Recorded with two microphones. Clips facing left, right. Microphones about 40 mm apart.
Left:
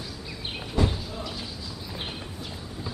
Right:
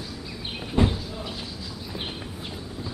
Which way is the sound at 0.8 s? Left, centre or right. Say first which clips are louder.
Right 3 dB; right.